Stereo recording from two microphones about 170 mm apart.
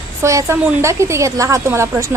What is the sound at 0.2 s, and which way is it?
A woman's voice, 15° right (ahead or behind).